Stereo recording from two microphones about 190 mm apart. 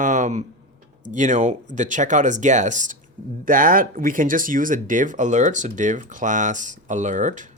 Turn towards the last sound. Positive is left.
turn(degrees=-40)  # may be behind; listen again after turning